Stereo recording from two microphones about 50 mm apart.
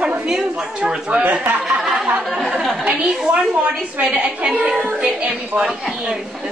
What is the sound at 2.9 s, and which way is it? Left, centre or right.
Speech, centre.